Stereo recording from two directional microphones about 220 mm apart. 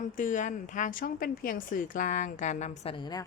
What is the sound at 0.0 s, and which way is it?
A woman's voice, 35° left (ahead or behind).